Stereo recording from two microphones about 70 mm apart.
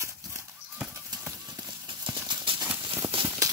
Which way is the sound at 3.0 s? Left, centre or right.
Right.